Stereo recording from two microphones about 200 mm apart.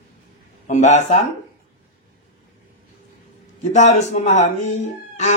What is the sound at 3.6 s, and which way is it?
Speech, 35° left (ahead or behind).